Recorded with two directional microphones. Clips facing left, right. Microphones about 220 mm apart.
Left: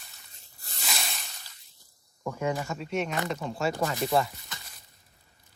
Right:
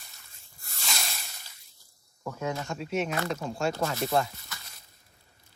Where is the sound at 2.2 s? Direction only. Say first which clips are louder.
Left 3 dB; 15° left (ahead or behind).